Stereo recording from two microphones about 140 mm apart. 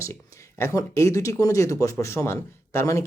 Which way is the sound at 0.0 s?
20° left (ahead or behind).